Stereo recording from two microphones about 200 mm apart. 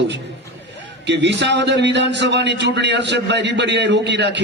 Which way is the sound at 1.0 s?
60° right (ahead or behind).